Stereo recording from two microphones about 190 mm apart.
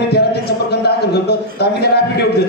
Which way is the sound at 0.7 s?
60° left (ahead or behind).